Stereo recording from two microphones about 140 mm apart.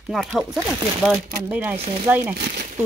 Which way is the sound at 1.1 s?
15° right (ahead or behind).